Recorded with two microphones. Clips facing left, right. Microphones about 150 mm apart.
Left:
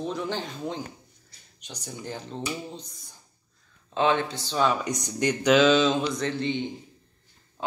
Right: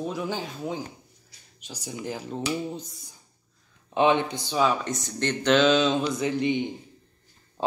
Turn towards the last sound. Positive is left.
turn(degrees=-30)  # may be behind; listen again after turning